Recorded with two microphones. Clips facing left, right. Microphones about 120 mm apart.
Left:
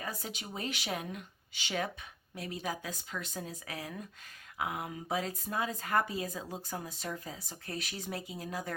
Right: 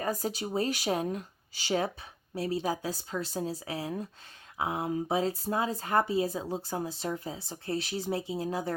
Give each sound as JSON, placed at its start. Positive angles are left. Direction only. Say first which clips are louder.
{"t": 0.0, "sound": "speech", "louder": "right 9 dB", "side_deg": -40}